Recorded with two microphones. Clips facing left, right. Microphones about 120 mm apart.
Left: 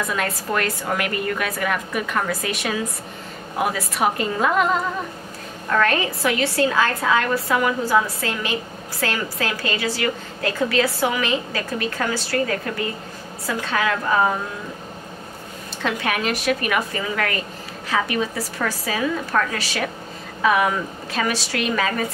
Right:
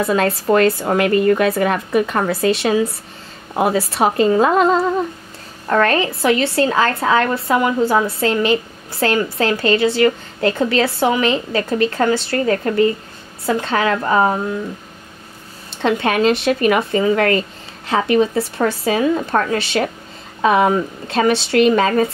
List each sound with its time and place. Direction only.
0.0 s a woman's voice: 30° right (ahead or behind)
15.8 s a woman's voice: 25° right (ahead or behind)